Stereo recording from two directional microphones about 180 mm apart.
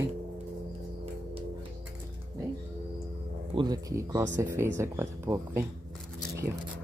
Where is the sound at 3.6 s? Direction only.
20° right (ahead or behind).